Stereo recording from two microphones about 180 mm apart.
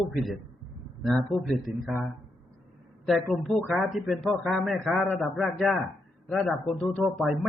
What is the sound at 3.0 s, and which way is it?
A man's voice, centre (ahead or behind).